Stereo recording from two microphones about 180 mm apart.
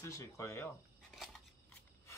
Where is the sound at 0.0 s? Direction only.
20° left (ahead or behind).